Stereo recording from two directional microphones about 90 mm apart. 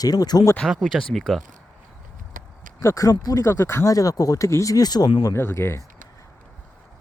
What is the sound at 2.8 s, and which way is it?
Speech, 35° left (ahead or behind).